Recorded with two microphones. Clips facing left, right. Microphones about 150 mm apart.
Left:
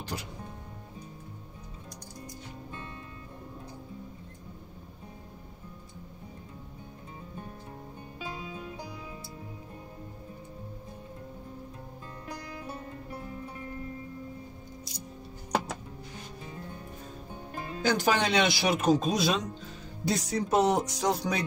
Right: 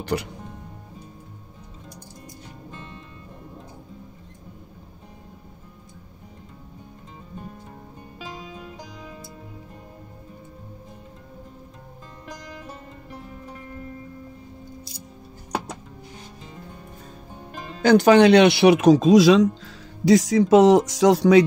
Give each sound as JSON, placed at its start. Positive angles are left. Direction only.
{"t": 0.0, "sound": "speech", "side_deg": -70}
{"t": 17.8, "sound": "speech", "side_deg": -70}